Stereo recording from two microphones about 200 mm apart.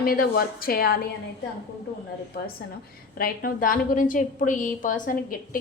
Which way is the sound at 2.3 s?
55° left (ahead or behind).